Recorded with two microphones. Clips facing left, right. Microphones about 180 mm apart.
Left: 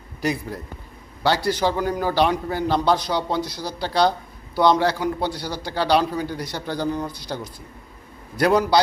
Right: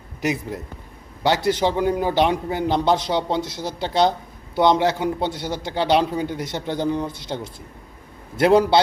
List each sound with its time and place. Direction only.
0.2 s a man's voice: 20° right (ahead or behind)